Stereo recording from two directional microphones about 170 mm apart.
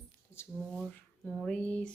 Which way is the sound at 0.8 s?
Centre (ahead or behind).